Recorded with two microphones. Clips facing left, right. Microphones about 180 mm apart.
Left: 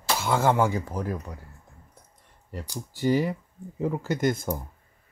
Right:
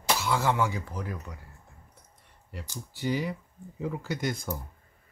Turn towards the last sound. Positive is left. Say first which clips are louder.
# left 6 dB
turn(degrees=45)  # may be behind; listen again after turning